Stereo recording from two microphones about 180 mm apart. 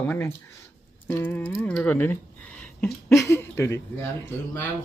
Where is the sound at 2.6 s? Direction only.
5° left (ahead or behind).